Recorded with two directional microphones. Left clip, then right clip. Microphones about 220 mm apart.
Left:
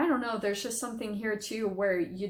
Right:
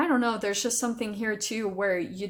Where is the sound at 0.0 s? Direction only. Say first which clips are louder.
Right 3 dB; 45° right (ahead or behind).